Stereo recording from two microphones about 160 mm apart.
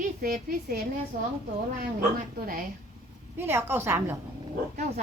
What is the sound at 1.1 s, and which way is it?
Speech, 55° right (ahead or behind).